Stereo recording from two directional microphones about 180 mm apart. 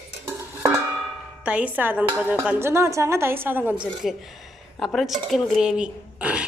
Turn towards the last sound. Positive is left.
turn(degrees=-5)  # may be behind; listen again after turning